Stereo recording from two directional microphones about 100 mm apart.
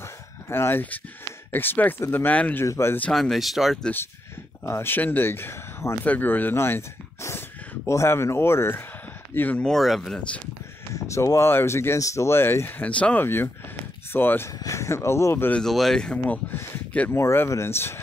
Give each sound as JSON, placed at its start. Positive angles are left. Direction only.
{"t": 0.5, "sound": "speech", "side_deg": 25}
{"t": 2.6, "sound": "speech", "side_deg": 25}
{"t": 3.1, "sound": "speech", "side_deg": 0}
{"t": 4.6, "sound": "speech", "side_deg": 25}
{"t": 9.6, "sound": "speech", "side_deg": 0}
{"t": 11.0, "sound": "speech", "side_deg": 30}
{"t": 15.6, "sound": "speech", "side_deg": 5}
{"t": 17.2, "sound": "speech", "side_deg": 30}